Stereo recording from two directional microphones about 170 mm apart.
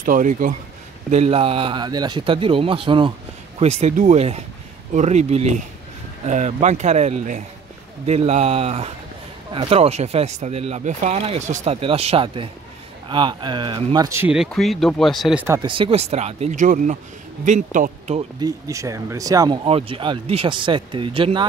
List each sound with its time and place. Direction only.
0.0 s speech: 50° right (ahead or behind)
1.1 s speech: 35° right (ahead or behind); by 14.3 s 15° right (ahead or behind)
14.3 s speech: centre (ahead or behind)
15.6 s speech: 30° right (ahead or behind); by 18.2 s 45° right (ahead or behind)
18.4 s speech: 20° right (ahead or behind)